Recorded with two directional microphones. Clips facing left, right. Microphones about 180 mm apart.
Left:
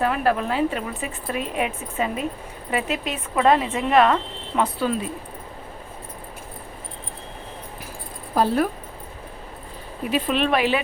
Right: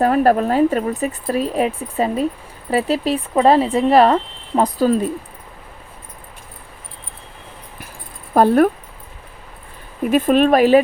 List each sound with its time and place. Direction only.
0.0 s speech: 40° right (ahead or behind)
8.4 s speech: 55° right (ahead or behind)
10.0 s speech: 50° right (ahead or behind)